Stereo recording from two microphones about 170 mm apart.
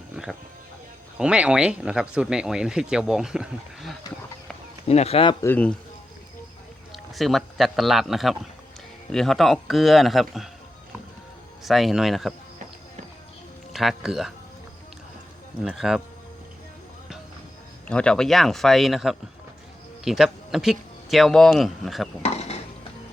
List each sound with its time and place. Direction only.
0.2 s music: 5° right (ahead or behind)
1.2 s speech: 5° right (ahead or behind)
4.9 s speech: 35° left (ahead or behind)
5.4 s speech: 10° left (ahead or behind)
6.9 s speech: centre (ahead or behind)
11.6 s speech: centre (ahead or behind)
13.7 s speech: centre (ahead or behind)
15.6 s speech: centre (ahead or behind)
17.8 s speech: 5° left (ahead or behind)
22.2 s dishes: 40° left (ahead or behind)